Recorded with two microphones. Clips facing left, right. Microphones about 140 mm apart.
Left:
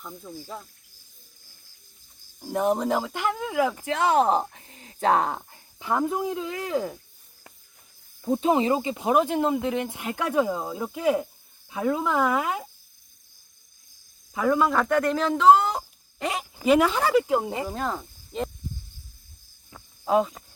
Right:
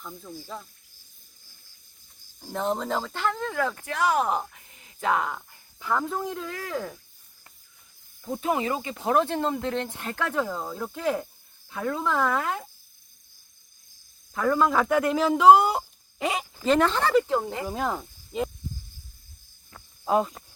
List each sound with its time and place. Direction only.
0.0 s speech: 5° left (ahead or behind)
2.4 s speech: 10° left (ahead or behind); by 5.5 s 35° left (ahead or behind)
5.8 s speech: 15° left (ahead or behind)
8.2 s speech: 20° left (ahead or behind)
14.3 s speech: 5° left (ahead or behind)
17.7 s cricket: 5° right (ahead or behind)
19.7 s cricket: centre (ahead or behind)